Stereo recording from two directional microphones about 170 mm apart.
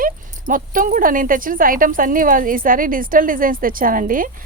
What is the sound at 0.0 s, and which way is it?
Speech, 55° right (ahead or behind).